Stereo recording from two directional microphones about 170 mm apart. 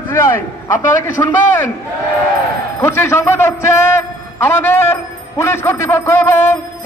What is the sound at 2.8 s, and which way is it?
A man's voice, 15° left (ahead or behind).